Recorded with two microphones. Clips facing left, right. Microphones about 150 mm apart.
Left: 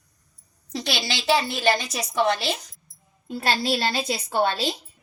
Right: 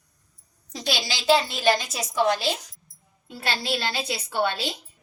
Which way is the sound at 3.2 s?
45° left (ahead or behind).